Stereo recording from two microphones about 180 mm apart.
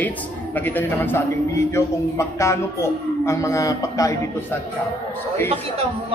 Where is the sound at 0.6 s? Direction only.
10° left (ahead or behind).